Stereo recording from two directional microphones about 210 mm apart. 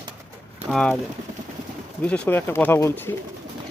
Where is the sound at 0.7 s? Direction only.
5° left (ahead or behind).